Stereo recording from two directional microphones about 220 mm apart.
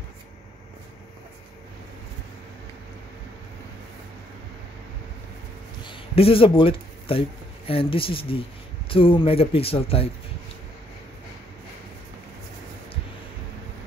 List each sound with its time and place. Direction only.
5.9 s speech: 25° left (ahead or behind)